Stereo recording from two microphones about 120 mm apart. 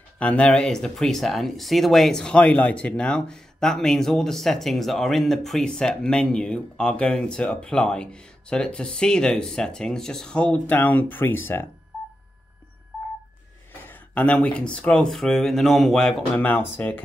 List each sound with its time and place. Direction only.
0.2 s speech: 10° left (ahead or behind)
13.8 s speech: 15° left (ahead or behind)
16.3 s speech: 15° left (ahead or behind)